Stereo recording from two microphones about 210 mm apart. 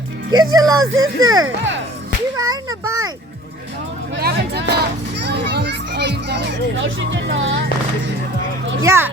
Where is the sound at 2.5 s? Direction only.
15° right (ahead or behind).